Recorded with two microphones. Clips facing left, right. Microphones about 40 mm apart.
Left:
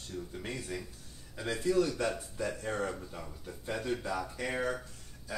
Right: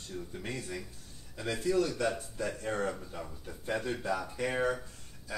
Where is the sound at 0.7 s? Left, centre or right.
Centre.